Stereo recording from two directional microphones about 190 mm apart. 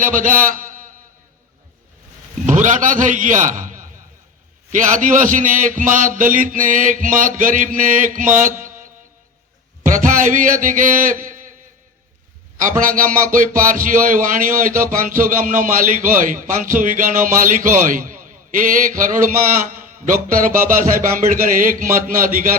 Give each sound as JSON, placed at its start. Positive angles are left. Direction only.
{"t": 0.0, "sound": "a man's voice", "side_deg": -45}
{"t": 2.5, "sound": "a man's voice", "side_deg": -40}
{"t": 4.9, "sound": "a man's voice", "side_deg": -45}
{"t": 8.4, "sound": "music", "side_deg": -40}
{"t": 9.8, "sound": "a man's voice", "side_deg": -45}
{"t": 12.5, "sound": "a man's voice", "side_deg": -45}